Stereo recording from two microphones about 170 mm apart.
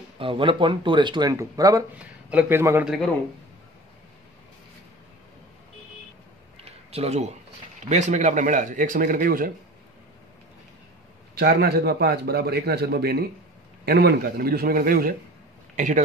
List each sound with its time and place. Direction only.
0.2 s speech: 30° right (ahead or behind)
2.0 s a man's voice: 5° right (ahead or behind)
2.8 s a man's voice: centre (ahead or behind)
6.6 s a sound: 35° right (ahead or behind)
7.9 s speech: 45° right (ahead or behind)
11.3 s a man's voice: 70° right (ahead or behind)
15.7 s a man's voice: 45° right (ahead or behind)